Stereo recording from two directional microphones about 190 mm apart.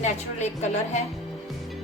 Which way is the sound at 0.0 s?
35° left (ahead or behind).